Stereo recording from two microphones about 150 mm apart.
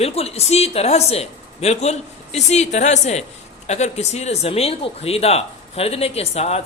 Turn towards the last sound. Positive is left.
turn(degrees=45)  # may be behind; listen again after turning